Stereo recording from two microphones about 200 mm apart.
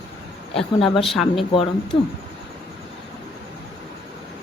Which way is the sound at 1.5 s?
25° left (ahead or behind).